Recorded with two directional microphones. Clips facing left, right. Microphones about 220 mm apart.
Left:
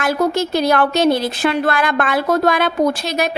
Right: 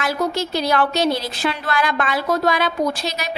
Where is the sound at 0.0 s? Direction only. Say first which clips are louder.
Left 5 dB; 50° left (ahead or behind).